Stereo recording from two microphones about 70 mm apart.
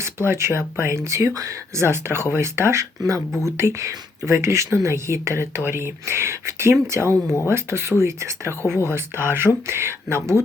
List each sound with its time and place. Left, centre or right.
0.0 s speech: right